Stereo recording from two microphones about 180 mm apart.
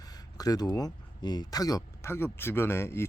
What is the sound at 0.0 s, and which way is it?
Speech, 20° left (ahead or behind).